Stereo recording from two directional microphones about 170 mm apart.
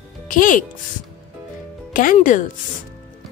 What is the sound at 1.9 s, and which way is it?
Speech, 50° left (ahead or behind).